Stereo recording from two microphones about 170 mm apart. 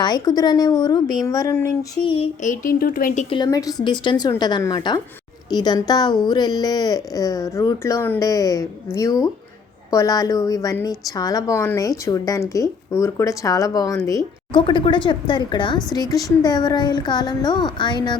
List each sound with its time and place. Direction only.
0.0 s a woman's voice: 25° left (ahead or behind)
2.0 s a sound: 35° left (ahead or behind)
2.5 s speech: 55° left (ahead or behind)
3.2 s a woman's voice: 25° left (ahead or behind)